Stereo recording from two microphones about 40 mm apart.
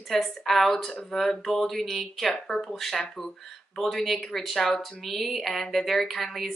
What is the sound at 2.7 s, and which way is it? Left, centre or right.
Speech, centre.